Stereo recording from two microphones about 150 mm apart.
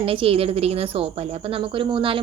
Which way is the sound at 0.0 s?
40° right (ahead or behind).